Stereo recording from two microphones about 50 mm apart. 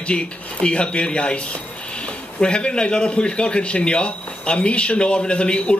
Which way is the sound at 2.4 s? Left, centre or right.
Centre.